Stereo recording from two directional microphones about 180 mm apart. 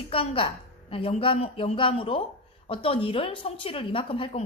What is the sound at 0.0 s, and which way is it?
A woman's voice, 30° left (ahead or behind).